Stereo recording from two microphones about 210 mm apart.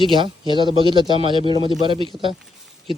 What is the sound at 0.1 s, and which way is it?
Speech, 25° right (ahead or behind).